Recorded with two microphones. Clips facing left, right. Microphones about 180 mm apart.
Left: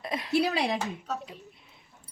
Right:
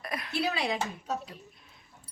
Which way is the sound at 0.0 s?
25° left (ahead or behind).